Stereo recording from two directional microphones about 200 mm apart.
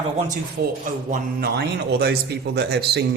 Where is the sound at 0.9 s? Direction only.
45° right (ahead or behind).